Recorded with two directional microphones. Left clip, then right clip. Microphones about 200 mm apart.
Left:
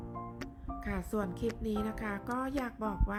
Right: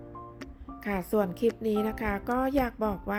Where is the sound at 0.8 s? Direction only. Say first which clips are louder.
Right 9 dB; 20° right (ahead or behind).